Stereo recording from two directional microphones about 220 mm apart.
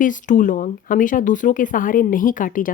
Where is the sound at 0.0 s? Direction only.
35° left (ahead or behind).